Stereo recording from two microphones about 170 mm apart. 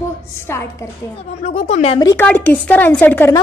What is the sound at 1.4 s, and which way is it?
Speech, 40° left (ahead or behind).